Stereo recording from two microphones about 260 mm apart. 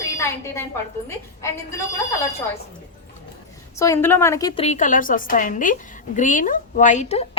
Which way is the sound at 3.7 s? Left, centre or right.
Centre.